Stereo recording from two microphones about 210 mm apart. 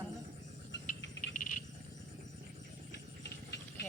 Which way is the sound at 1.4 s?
40° left (ahead or behind).